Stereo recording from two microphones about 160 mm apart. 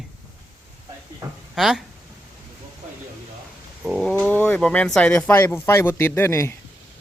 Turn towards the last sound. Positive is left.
turn(degrees=15)  # may be behind; listen again after turning